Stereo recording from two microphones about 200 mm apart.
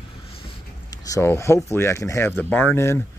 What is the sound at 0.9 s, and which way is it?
Speech, 15° left (ahead or behind).